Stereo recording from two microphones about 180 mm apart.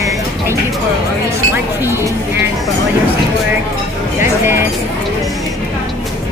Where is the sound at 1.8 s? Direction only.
15° right (ahead or behind).